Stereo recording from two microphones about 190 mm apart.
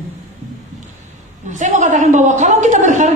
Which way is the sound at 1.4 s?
40° right (ahead or behind).